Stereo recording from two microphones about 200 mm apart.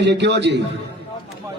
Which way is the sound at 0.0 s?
60° right (ahead or behind).